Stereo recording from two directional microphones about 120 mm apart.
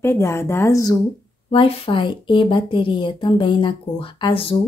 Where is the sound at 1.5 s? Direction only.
50° left (ahead or behind).